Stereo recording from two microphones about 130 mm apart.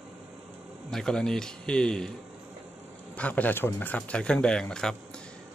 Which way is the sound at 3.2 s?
10° left (ahead or behind).